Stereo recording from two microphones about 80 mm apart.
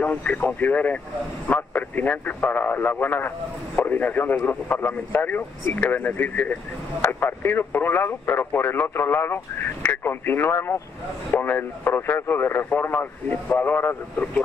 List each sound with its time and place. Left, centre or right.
0.0 s speech: left